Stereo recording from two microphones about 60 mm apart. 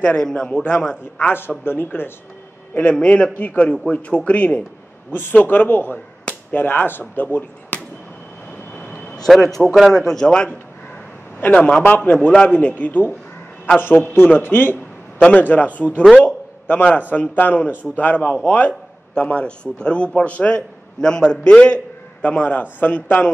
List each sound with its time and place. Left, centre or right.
0.0 s a man's voice: centre
1.1 s speech: left
2.9 s a man's voice: centre
8.7 s vehicle: left
9.3 s a man's voice: centre
11.3 s a man's voice: left
16.2 s a sound: left
17.1 s a man's voice: left